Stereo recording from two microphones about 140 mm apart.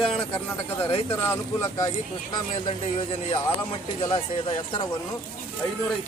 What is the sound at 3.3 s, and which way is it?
Speech, 40° left (ahead or behind).